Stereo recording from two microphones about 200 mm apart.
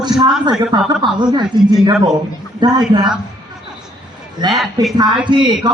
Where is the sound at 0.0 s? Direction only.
20° right (ahead or behind).